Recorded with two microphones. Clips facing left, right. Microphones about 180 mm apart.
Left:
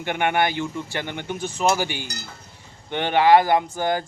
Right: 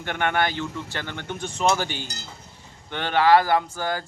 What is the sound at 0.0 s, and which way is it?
Speech, 15° left (ahead or behind).